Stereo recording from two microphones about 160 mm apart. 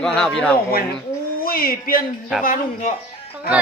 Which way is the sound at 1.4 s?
65° left (ahead or behind).